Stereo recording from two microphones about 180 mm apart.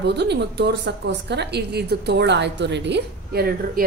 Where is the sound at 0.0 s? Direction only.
70° right (ahead or behind).